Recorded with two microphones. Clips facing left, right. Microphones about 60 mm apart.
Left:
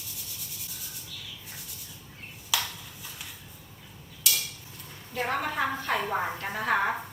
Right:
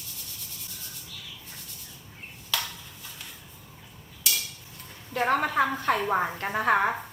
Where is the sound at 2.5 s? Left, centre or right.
Centre.